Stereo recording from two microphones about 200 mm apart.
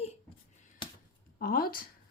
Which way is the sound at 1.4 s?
45° left (ahead or behind).